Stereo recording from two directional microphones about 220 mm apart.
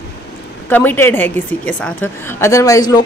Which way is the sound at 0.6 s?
10° left (ahead or behind).